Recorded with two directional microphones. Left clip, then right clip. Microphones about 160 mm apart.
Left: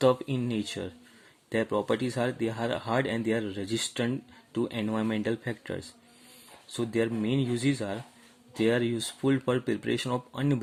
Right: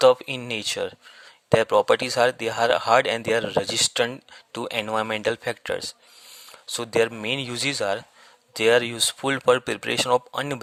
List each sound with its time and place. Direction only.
0.0 s a man's voice: 45° right (ahead or behind)